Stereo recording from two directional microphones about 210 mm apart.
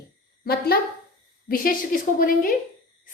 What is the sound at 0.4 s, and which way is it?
A woman's voice, 45° left (ahead or behind).